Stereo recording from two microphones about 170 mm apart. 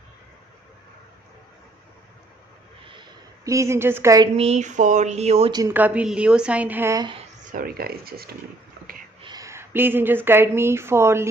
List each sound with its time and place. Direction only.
2.8 s a sound: 30° right (ahead or behind)
4.4 s speech: 40° right (ahead or behind)
5.5 s a woman's voice: 25° right (ahead or behind)
5.7 s a woman's voice: 10° right (ahead or behind)
7.5 s speech: 60° right (ahead or behind)
9.2 s speech: 20° right (ahead or behind)